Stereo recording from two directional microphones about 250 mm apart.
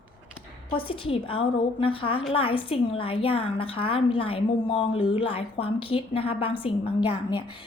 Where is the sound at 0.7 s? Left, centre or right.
Left.